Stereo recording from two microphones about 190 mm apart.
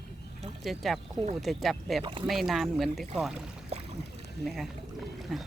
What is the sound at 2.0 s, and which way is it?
Speech, 25° right (ahead or behind).